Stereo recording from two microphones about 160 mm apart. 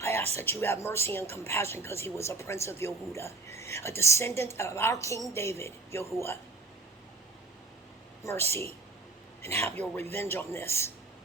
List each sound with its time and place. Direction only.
0.0 s a sound: 15° left (ahead or behind)
0.3 s a woman's voice: 15° left (ahead or behind)
8.2 s a woman's voice: 15° left (ahead or behind)
9.8 s a woman's voice: 10° left (ahead or behind)